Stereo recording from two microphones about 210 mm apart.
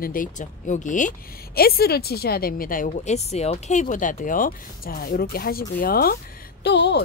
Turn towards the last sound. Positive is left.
turn(degrees=55)  # may be behind; listen again after turning